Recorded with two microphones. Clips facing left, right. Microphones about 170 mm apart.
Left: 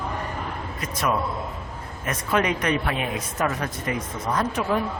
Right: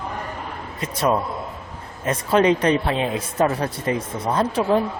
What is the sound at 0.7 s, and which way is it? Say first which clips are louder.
A woman's voice: right 5 dB; 25° right (ahead or behind).